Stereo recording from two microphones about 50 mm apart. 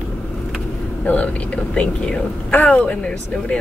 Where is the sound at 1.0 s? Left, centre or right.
Left.